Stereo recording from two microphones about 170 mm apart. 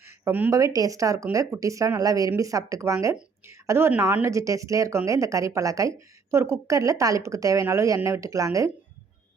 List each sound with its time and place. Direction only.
0.0 s a woman's voice: 15° right (ahead or behind)